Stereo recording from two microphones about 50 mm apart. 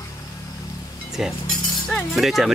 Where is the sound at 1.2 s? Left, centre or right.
Centre.